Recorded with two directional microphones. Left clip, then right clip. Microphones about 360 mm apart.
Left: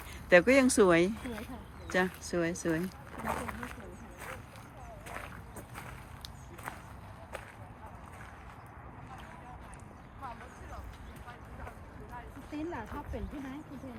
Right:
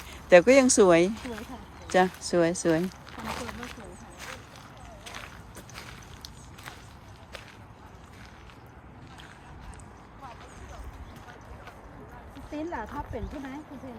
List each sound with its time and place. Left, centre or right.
0.3 s speech: centre
3.2 s speech: centre
12.5 s a sound: right